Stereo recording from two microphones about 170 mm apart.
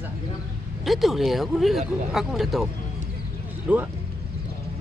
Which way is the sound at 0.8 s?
Centre (ahead or behind).